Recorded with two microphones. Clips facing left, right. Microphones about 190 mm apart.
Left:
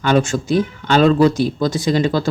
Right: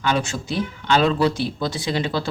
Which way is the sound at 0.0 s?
50° left (ahead or behind).